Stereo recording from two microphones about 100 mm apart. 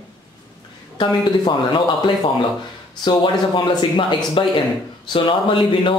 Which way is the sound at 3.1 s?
55° left (ahead or behind).